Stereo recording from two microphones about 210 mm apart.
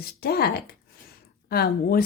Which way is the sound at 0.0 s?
50° left (ahead or behind).